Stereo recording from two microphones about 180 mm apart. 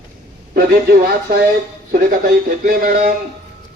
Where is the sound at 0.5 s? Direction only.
55° right (ahead or behind).